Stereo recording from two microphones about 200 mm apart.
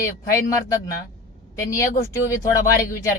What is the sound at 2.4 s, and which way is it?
Speech, 15° left (ahead or behind).